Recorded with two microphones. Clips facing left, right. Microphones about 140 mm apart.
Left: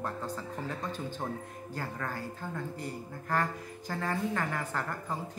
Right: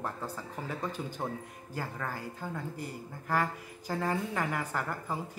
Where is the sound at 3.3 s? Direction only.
10° right (ahead or behind).